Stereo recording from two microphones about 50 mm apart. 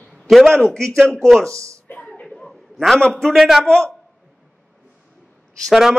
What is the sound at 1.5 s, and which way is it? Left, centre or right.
Speech, right.